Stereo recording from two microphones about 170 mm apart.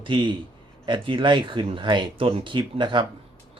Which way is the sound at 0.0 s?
30° right (ahead or behind).